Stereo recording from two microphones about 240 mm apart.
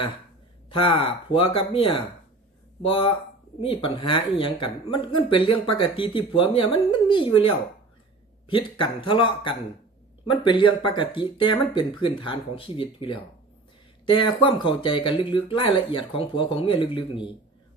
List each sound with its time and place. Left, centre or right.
0.7 s speech: left